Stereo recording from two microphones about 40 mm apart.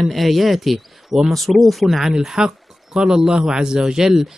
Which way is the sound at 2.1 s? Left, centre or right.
Centre.